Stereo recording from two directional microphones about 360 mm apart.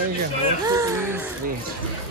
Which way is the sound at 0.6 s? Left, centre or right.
Centre.